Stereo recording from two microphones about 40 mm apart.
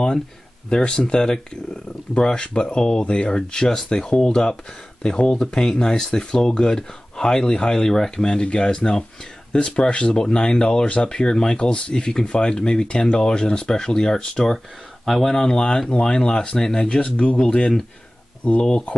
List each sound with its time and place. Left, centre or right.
0.7 s speech: left
12.0 s speech: centre
15.0 s speech: centre
15.3 s speech: centre